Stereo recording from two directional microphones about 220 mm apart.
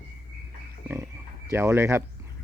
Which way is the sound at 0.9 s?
10° right (ahead or behind).